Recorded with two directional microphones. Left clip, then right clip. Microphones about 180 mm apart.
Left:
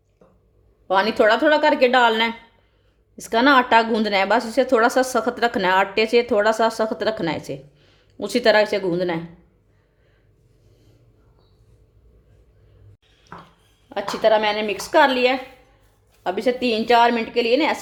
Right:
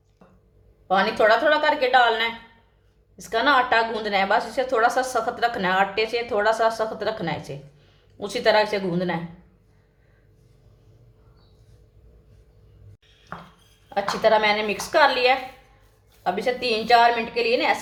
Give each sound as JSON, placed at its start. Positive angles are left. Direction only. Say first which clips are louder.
{"t": 0.9, "sound": "a woman's voice", "louder": "left 2 dB", "side_deg": 50}
{"t": 13.9, "sound": "a woman's voice", "louder": "left 1 dB", "side_deg": 40}